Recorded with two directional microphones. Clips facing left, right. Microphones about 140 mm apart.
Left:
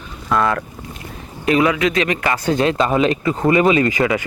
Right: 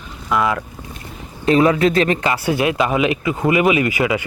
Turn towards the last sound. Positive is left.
turn(degrees=-15)  # may be behind; listen again after turning